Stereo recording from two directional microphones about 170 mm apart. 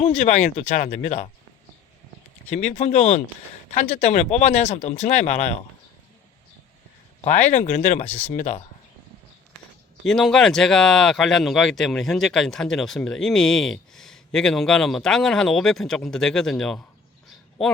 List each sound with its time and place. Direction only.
0.0 s speech: 40° left (ahead or behind)
2.4 s speech: 10° left (ahead or behind)
2.6 s speech: 40° left (ahead or behind)
7.3 s speech: 45° left (ahead or behind)
8.0 s speech: 10° left (ahead or behind)
8.4 s speech: 45° left (ahead or behind)
10.1 s speech: centre (ahead or behind)